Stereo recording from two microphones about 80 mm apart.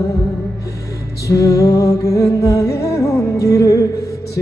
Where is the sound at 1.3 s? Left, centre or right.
Left.